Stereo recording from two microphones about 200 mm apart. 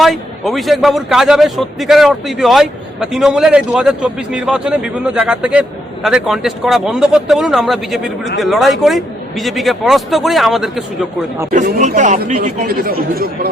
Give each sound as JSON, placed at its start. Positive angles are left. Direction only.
{"t": 0.0, "sound": "a man's voice", "side_deg": 0}
{"t": 11.5, "sound": "speech", "side_deg": -40}